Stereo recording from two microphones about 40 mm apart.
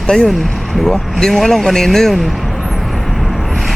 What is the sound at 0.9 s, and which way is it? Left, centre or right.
Speech, centre.